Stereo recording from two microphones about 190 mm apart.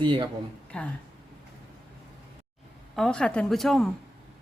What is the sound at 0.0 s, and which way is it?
Speech, 25° right (ahead or behind).